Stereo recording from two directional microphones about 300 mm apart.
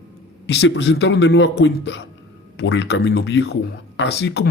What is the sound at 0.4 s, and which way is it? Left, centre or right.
Speech, left.